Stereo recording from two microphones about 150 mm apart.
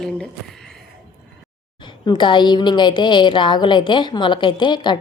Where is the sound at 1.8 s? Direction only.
30° left (ahead or behind).